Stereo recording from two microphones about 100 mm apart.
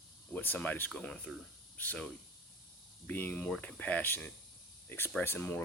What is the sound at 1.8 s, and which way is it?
Speech, 15° left (ahead or behind).